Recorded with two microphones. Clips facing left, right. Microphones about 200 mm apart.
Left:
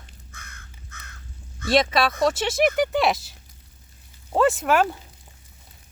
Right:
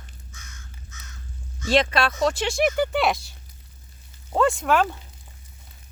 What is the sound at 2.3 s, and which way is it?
Speech, centre (ahead or behind).